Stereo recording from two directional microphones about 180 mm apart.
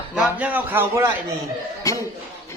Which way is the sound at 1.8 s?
20° left (ahead or behind).